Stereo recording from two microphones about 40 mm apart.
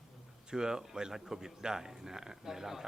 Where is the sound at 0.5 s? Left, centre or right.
Centre.